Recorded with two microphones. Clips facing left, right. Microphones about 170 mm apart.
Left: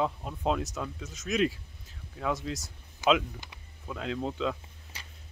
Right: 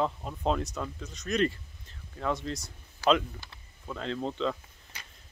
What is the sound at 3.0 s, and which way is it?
Speech, 20° left (ahead or behind).